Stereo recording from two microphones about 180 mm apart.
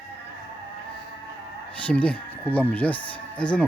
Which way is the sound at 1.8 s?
5° left (ahead or behind).